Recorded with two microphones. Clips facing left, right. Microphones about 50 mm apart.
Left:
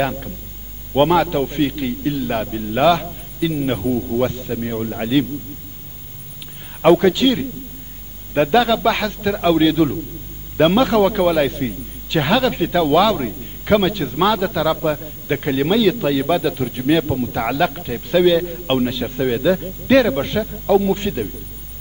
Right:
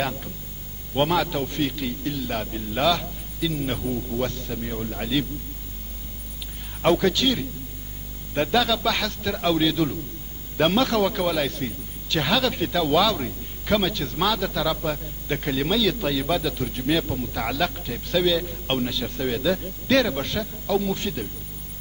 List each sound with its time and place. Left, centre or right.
0.0 s a man's voice: centre
6.8 s a man's voice: centre